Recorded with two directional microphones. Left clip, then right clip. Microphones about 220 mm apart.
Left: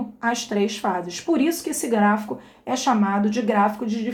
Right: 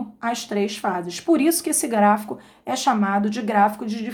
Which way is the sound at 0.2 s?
20° right (ahead or behind).